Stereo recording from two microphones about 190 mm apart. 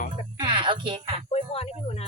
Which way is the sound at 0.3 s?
25° right (ahead or behind).